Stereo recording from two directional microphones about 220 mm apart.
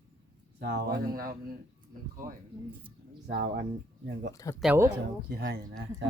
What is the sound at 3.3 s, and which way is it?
Speech, 45° right (ahead or behind).